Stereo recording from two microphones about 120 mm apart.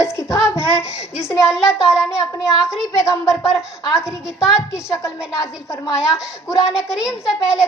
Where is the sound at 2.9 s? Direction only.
25° left (ahead or behind).